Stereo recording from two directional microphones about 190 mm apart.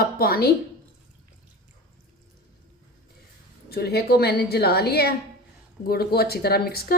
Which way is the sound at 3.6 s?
55° left (ahead or behind).